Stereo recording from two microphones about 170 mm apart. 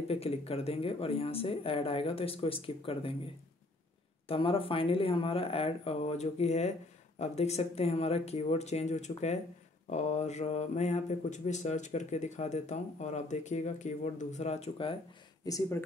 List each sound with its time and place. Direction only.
0.1 s speech: 35° left (ahead or behind)
4.3 s speech: 35° left (ahead or behind)
15.4 s speech: 20° left (ahead or behind)